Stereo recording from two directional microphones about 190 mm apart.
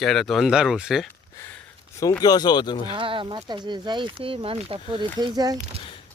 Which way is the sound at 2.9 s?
25° right (ahead or behind).